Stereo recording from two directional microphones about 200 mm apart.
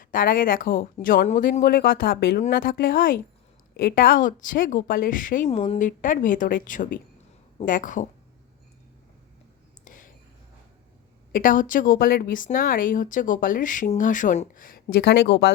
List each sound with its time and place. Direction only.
0.0 s speech: 45° left (ahead or behind)
5.5 s a woman's voice: 30° left (ahead or behind)
9.8 s a sound: 40° left (ahead or behind)
11.3 s speech: 45° left (ahead or behind)